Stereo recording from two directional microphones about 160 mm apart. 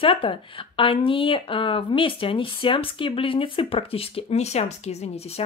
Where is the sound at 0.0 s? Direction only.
35° left (ahead or behind).